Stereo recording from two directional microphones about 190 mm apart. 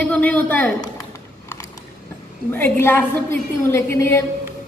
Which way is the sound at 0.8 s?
15° left (ahead or behind).